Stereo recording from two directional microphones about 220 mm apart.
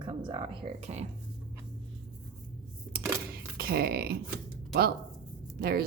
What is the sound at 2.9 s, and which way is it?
Camera, 45° right (ahead or behind).